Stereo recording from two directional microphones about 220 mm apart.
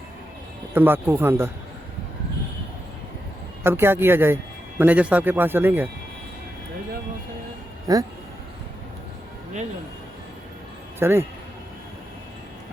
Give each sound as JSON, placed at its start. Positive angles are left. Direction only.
{"t": 0.7, "sound": "speech", "side_deg": -10}
{"t": 3.6, "sound": "speech", "side_deg": -10}
{"t": 7.9, "sound": "speech", "side_deg": -15}
{"t": 11.0, "sound": "speech", "side_deg": -10}